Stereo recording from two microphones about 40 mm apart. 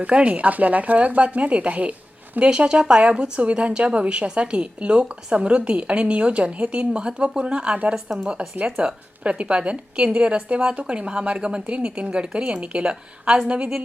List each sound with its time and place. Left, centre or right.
0.0 s a woman's voice: right